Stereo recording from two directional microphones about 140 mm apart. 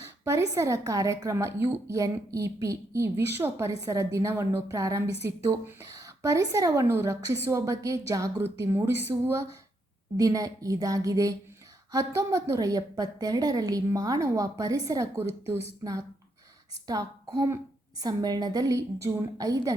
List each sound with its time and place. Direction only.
0.3 s a woman's voice: 20° right (ahead or behind)